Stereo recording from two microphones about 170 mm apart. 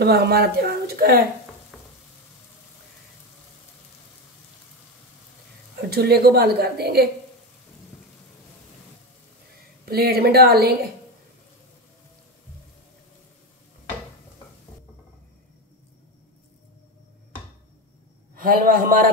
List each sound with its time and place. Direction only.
0.0 s speech: 70° right (ahead or behind)
5.8 s a woman's voice: 70° right (ahead or behind)
9.8 s a woman's voice: 65° right (ahead or behind)
18.3 s a man's voice: 55° right (ahead or behind)